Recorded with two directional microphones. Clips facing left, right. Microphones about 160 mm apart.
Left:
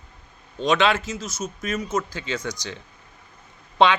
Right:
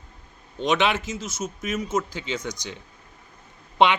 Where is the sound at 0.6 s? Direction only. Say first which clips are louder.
Left 2 dB; 20° right (ahead or behind).